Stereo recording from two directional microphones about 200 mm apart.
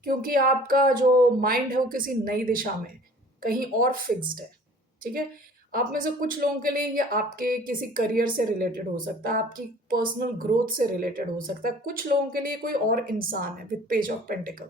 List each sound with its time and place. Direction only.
0.0 s speech: 45° right (ahead or behind)
5.7 s speech: 45° right (ahead or behind)